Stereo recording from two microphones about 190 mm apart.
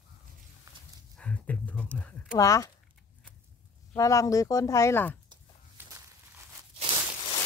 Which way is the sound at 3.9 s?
15° left (ahead or behind).